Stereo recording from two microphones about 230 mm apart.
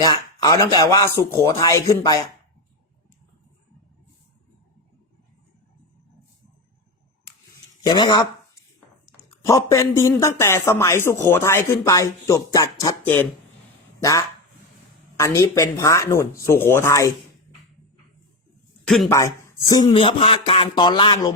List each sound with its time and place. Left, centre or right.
0.0 s speech: centre
7.9 s speech: centre
9.4 s speech: centre
18.9 s speech: centre
19.1 s speech: centre